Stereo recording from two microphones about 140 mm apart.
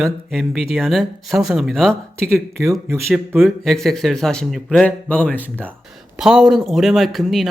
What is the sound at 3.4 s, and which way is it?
A man's voice, centre (ahead or behind).